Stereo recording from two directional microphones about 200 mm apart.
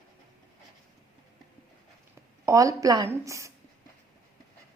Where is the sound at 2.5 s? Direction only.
15° right (ahead or behind).